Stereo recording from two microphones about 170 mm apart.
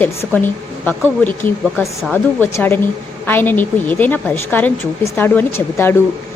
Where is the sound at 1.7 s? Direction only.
Centre (ahead or behind).